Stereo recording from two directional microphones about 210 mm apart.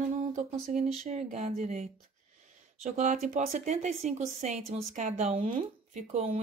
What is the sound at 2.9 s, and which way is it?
Speech, 35° right (ahead or behind).